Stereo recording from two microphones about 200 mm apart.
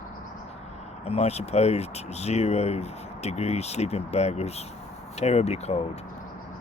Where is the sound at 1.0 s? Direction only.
30° left (ahead or behind).